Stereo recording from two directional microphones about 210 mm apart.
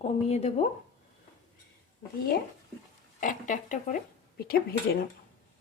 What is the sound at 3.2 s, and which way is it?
Speech, 40° left (ahead or behind).